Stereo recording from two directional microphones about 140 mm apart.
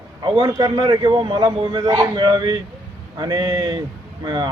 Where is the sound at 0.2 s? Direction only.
30° right (ahead or behind).